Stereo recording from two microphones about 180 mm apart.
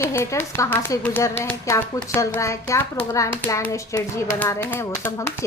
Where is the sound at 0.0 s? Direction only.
15° left (ahead or behind).